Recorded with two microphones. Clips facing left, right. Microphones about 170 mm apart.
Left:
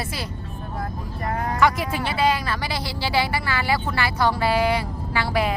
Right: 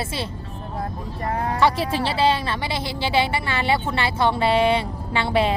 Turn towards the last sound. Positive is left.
turn(degrees=-25)  # may be behind; listen again after turning